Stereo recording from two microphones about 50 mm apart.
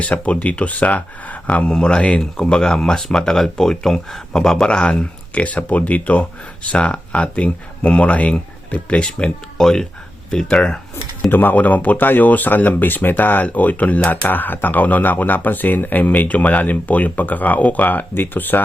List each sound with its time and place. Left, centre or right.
0.0 s speech: left
9.6 s speech: centre
11.3 s speech: left
14.3 s speech: left